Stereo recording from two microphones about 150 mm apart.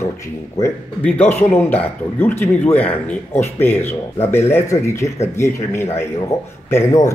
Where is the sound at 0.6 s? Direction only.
10° left (ahead or behind).